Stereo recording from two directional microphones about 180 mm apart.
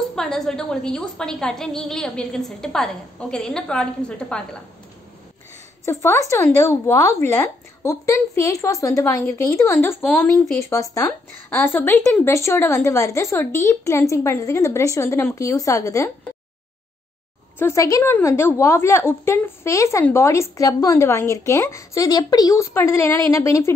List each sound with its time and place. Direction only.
0.1 s a woman's voice: 5° left (ahead or behind)
5.9 s a woman's voice: 15° left (ahead or behind)
10.6 s a woman's voice: 15° left (ahead or behind)
17.6 s a woman's voice: 15° left (ahead or behind)